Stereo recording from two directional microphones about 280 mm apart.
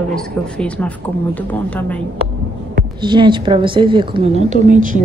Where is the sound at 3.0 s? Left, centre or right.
Centre.